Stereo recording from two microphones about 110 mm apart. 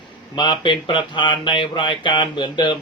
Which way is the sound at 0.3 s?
45° left (ahead or behind).